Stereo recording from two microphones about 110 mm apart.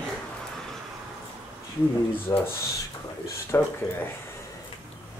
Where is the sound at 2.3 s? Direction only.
30° left (ahead or behind).